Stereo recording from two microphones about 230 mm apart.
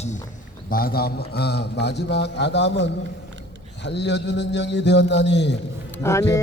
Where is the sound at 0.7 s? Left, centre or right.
Left.